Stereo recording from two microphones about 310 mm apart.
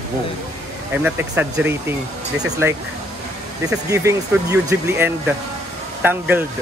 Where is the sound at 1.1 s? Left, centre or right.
Centre.